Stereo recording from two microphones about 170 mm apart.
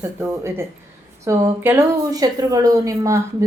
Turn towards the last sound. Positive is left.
turn(degrees=-20)  # may be behind; listen again after turning